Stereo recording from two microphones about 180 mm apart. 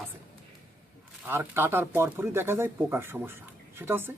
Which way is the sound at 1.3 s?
10° right (ahead or behind).